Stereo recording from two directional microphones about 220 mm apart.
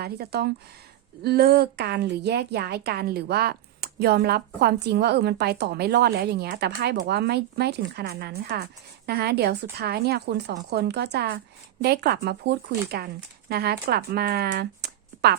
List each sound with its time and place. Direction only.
0.0 s a woman's voice: 45° right (ahead or behind)